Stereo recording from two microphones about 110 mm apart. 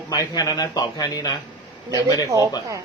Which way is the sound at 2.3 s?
30° right (ahead or behind).